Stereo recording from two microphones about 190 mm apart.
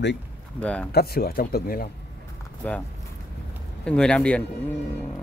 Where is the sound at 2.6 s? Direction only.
10° left (ahead or behind).